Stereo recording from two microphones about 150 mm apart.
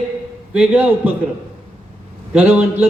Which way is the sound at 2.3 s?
10° right (ahead or behind).